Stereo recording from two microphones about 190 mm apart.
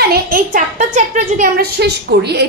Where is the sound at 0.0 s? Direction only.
50° right (ahead or behind).